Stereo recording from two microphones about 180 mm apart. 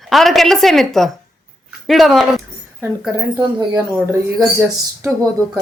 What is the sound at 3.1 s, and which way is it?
Speech, 20° right (ahead or behind).